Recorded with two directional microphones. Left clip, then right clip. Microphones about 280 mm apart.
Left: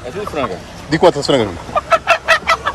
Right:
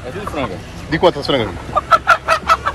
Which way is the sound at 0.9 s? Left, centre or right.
Left.